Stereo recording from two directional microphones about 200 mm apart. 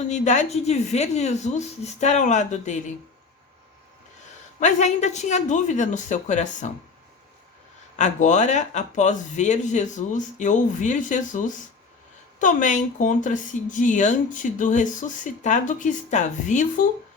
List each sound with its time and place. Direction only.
0.1 s speech: 35° left (ahead or behind)
4.6 s speech: 35° left (ahead or behind)
7.9 s speech: 35° left (ahead or behind)